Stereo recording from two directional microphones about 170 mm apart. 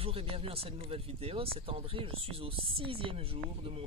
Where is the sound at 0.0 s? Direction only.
35° right (ahead or behind).